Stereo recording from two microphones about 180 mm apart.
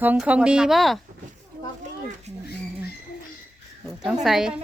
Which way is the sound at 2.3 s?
40° right (ahead or behind).